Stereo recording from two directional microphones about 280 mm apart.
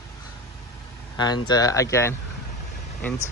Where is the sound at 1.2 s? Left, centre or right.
Centre.